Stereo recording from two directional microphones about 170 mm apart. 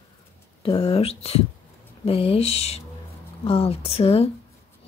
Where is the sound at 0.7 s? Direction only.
30° left (ahead or behind).